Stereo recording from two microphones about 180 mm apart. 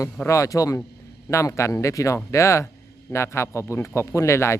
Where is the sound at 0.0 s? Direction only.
15° left (ahead or behind).